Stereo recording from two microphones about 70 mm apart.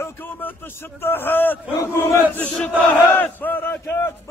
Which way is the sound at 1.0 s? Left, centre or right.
Left.